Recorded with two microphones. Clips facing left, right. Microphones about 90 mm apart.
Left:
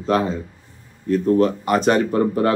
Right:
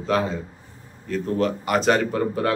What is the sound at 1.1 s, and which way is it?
Speech, 35° left (ahead or behind).